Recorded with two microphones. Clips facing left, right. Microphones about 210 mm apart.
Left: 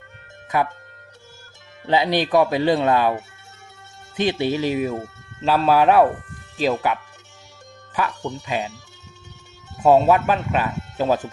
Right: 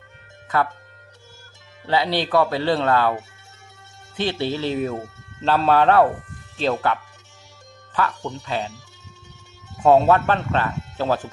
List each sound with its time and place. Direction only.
0.5 s speech: 15° left (ahead or behind)
1.9 s speech: 15° left (ahead or behind)
4.2 s speech: 15° left (ahead or behind)
9.8 s speech: 5° left (ahead or behind)